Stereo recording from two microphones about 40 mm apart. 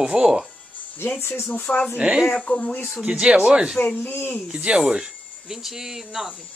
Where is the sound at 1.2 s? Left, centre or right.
Left.